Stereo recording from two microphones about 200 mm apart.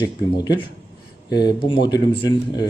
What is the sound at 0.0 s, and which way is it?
Speech, 20° left (ahead or behind).